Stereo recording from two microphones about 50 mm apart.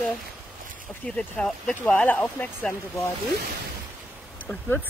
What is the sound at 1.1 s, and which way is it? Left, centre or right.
Speech, centre.